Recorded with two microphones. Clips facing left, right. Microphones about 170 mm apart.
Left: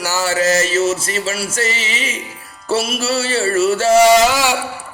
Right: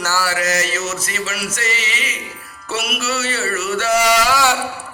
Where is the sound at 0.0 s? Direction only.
20° left (ahead or behind).